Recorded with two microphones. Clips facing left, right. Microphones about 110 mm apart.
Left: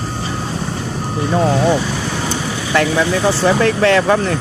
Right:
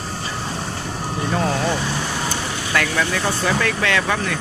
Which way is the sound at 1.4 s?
25° left (ahead or behind).